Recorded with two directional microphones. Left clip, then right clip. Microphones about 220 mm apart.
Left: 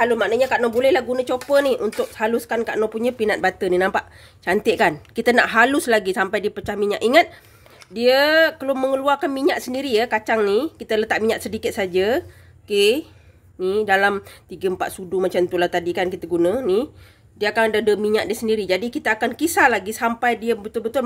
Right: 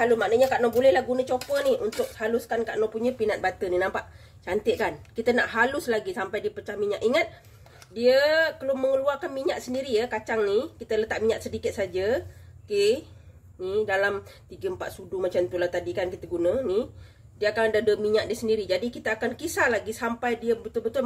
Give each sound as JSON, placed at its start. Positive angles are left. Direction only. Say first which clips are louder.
{"t": 0.0, "sound": "speech", "louder": "left 3 dB", "side_deg": 50}